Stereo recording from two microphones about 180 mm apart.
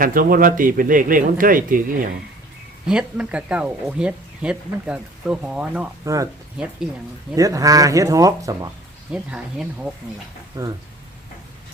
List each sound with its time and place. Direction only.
0.0 s speech: 50° right (ahead or behind)
2.8 s speech: 5° right (ahead or behind)
7.3 s speech: 20° right (ahead or behind)
9.1 s speech: 5° right (ahead or behind)
10.5 s speech: 20° right (ahead or behind)